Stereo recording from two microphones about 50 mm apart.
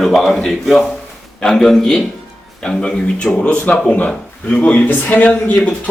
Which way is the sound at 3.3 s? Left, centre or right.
Left.